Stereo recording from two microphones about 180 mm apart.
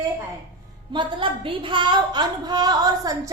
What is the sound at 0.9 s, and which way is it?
A woman's voice, 25° right (ahead or behind).